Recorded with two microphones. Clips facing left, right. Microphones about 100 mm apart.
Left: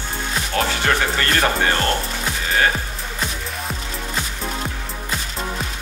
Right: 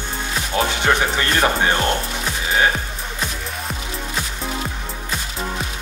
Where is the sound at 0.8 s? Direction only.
15° right (ahead or behind).